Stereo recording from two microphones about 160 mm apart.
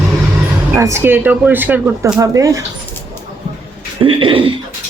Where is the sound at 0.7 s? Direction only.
15° right (ahead or behind).